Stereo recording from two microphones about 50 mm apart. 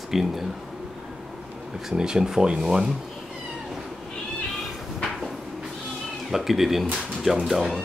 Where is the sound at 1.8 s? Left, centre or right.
Centre.